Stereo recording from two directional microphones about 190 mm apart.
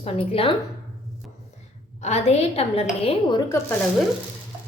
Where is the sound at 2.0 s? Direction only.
35° left (ahead or behind).